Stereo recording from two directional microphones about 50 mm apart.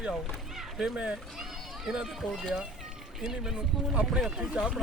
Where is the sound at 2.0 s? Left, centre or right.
Centre.